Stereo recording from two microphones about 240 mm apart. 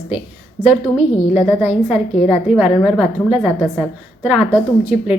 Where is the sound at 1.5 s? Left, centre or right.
Centre.